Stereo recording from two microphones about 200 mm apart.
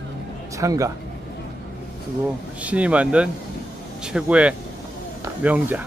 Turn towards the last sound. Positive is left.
turn(degrees=-10)  # may be behind; listen again after turning